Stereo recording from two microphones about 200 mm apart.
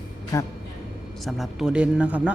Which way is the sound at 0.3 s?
15° left (ahead or behind).